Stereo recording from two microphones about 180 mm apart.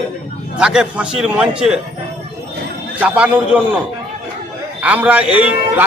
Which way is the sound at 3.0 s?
10° right (ahead or behind).